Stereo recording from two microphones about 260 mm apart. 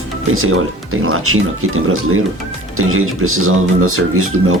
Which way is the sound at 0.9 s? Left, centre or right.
Right.